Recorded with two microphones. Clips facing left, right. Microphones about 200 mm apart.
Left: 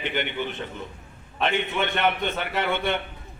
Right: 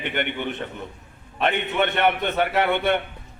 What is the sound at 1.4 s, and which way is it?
A man's voice, 55° right (ahead or behind).